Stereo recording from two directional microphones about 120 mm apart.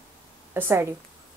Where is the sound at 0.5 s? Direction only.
20° right (ahead or behind).